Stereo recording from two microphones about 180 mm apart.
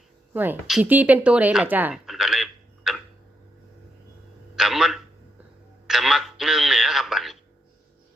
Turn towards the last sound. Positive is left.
turn(degrees=0)  # may be behind; listen again after turning